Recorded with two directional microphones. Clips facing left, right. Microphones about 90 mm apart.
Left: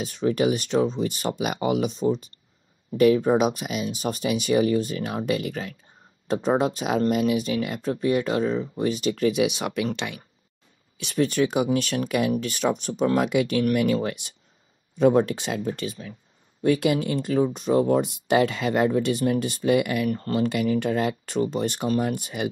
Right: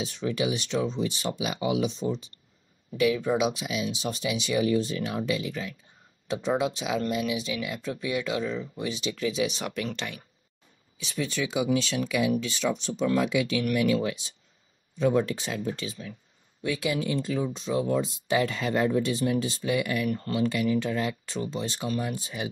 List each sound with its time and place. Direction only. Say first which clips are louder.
0.0 s speech: left 6 dB; 50° left (ahead or behind)
11.0 s speech: left 8 dB; 60° left (ahead or behind)
20.1 s speech: left 3 dB; 40° left (ahead or behind)
20.4 s speech: left 2 dB; 55° left (ahead or behind)
22.1 s speech: left 5 dB; 65° left (ahead or behind)